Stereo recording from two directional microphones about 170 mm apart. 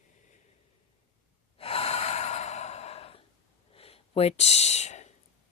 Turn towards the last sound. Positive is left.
turn(degrees=40)  # may be behind; listen again after turning